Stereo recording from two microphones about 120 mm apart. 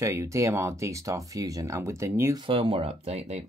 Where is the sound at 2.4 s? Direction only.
50° right (ahead or behind).